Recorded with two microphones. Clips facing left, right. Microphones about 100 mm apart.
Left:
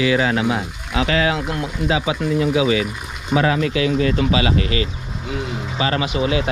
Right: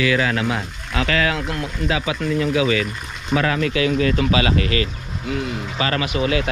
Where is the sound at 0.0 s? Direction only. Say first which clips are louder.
Left 2 dB; 25° left (ahead or behind).